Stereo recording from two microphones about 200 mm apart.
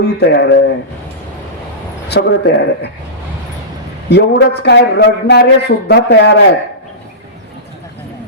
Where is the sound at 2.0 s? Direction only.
55° left (ahead or behind).